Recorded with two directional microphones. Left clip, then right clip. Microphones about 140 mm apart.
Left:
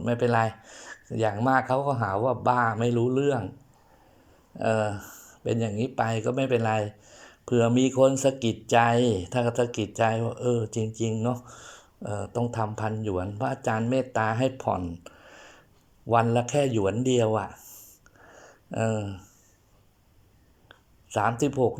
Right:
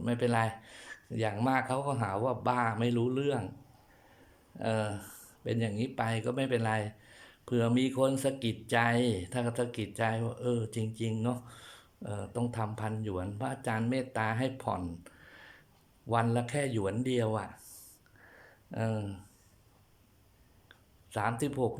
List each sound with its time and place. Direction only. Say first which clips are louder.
0.0 s speech: left 6 dB; centre (ahead or behind)
4.5 s speech: left 8 dB; 5° left (ahead or behind)
18.9 s speech: left 7 dB; 5° right (ahead or behind)
20.7 s a sound: left 9 dB; 5° left (ahead or behind)